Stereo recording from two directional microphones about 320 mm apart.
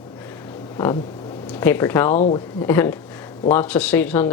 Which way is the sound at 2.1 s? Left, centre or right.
Left.